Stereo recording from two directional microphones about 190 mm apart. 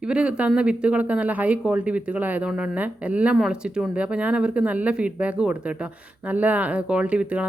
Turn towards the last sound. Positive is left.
turn(degrees=-5)  # may be behind; listen again after turning